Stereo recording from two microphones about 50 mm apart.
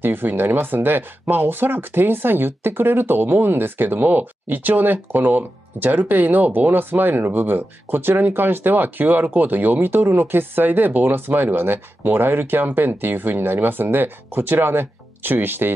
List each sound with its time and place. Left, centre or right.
0.0 s speech: right